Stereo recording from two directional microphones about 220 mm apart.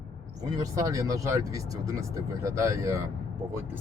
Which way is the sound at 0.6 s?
15° right (ahead or behind).